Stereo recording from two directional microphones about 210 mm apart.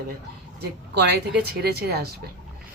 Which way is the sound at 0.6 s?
50° right (ahead or behind).